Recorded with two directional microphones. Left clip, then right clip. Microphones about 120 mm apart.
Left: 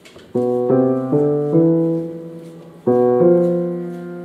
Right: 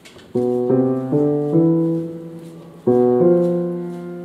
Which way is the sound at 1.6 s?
20° left (ahead or behind).